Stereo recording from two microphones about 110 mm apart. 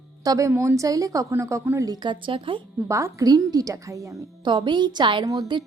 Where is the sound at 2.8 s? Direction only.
25° right (ahead or behind).